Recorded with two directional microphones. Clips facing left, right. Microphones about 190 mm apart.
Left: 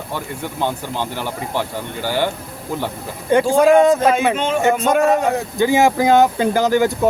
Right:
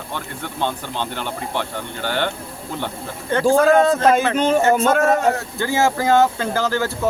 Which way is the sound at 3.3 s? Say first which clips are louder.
Left 2 dB; 15° left (ahead or behind).